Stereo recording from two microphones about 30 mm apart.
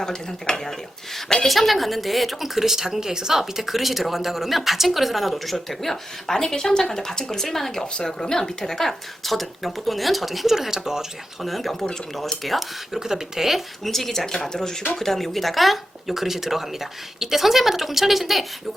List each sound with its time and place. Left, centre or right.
0.0 s speech: left
1.5 s speech: centre
2.6 s speech: centre
11.4 s speech: centre
13.0 s speech: centre
13.8 s speech: centre
14.5 s speech: left; by 18.4 s centre